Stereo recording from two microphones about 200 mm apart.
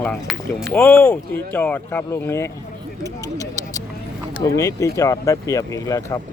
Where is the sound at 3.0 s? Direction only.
15° left (ahead or behind).